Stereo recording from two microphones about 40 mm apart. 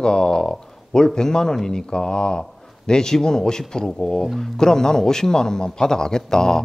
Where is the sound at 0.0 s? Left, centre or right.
Centre.